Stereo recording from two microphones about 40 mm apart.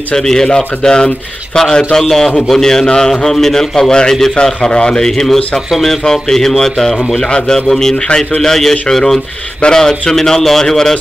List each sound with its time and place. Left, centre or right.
0.1 s a man's voice: centre
4.6 s a man's voice: left